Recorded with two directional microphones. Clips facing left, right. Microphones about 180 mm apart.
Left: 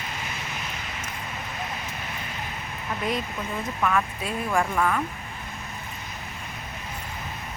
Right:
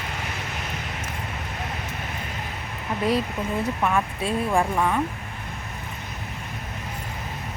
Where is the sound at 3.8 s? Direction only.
25° right (ahead or behind).